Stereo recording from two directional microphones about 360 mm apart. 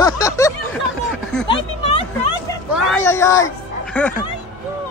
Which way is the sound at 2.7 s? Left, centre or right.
Centre.